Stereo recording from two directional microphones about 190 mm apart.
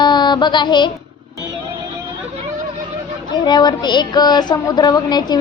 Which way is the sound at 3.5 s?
20° left (ahead or behind).